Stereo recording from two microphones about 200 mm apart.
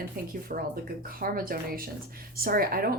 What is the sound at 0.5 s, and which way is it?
A woman's voice, 40° right (ahead or behind).